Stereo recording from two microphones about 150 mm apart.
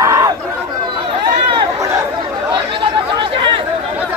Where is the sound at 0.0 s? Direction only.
20° right (ahead or behind).